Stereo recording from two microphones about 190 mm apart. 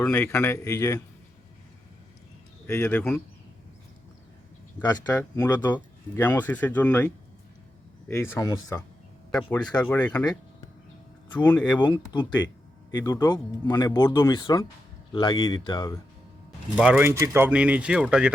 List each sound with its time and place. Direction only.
0.0 s speech: 10° left (ahead or behind)
2.6 s speech: 10° left (ahead or behind)
4.8 s speech: 20° left (ahead or behind)
9.5 s speech: 5° left (ahead or behind)
11.7 s speech: 20° left (ahead or behind)
16.7 s speech: 5° right (ahead or behind)